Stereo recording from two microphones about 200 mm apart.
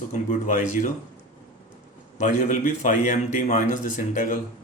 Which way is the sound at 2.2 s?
35° left (ahead or behind).